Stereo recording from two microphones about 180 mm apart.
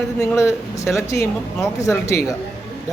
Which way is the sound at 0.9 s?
15° left (ahead or behind).